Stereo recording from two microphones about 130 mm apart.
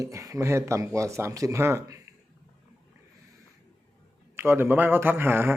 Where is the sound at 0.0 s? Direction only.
25° right (ahead or behind).